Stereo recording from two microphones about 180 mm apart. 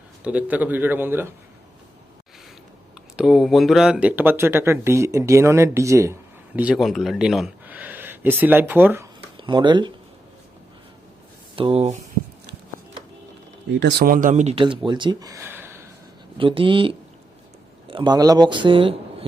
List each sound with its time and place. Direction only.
0.3 s speech: 10° right (ahead or behind)
3.2 s speech: centre (ahead or behind)
6.6 s speech: 5° right (ahead or behind)
9.4 s speech: 25° right (ahead or behind)
11.5 s speech: 30° right (ahead or behind)
14.0 s speech: 50° right (ahead or behind); by 15.8 s 15° right (ahead or behind)
16.4 s speech: 30° right (ahead or behind)